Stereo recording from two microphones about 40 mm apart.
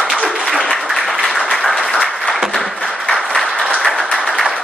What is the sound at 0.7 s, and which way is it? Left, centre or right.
Applause, centre.